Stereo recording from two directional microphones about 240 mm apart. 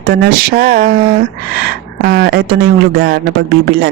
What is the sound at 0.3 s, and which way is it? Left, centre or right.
Speech, right.